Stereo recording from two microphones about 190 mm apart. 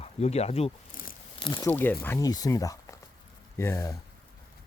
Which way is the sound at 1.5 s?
15° left (ahead or behind).